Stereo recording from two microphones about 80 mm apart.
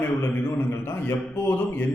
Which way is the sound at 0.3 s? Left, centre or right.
Left.